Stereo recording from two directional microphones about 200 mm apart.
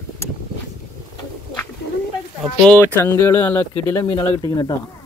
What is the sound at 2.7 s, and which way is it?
Speech, 10° left (ahead or behind).